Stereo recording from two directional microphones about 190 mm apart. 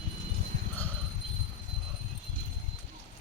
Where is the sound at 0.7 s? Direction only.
10° left (ahead or behind).